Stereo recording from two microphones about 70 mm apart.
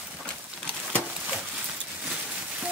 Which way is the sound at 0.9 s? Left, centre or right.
Centre.